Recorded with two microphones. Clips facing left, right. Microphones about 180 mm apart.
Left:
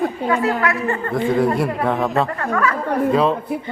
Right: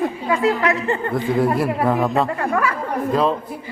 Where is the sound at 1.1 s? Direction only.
Centre (ahead or behind).